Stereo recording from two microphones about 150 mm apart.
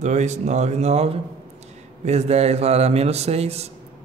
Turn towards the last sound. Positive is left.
turn(degrees=-45)  # may be behind; listen again after turning